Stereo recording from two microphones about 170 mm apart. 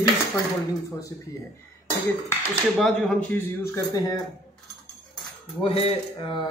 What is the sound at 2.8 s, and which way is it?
A man's voice, 5° left (ahead or behind).